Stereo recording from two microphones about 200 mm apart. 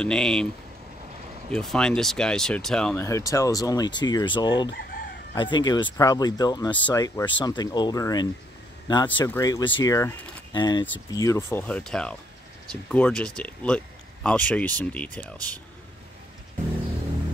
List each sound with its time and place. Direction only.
0.0 s speech: 5° left (ahead or behind)
1.5 s speech: centre (ahead or behind)
3.1 s speech: 15° left (ahead or behind)
4.6 s chicken: 50° left (ahead or behind)
5.3 s speech: 25° left (ahead or behind); by 15.3 s 5° left (ahead or behind)